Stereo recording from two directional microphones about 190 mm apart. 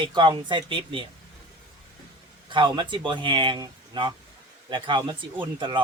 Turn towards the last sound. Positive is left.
turn(degrees=-25)  # may be behind; listen again after turning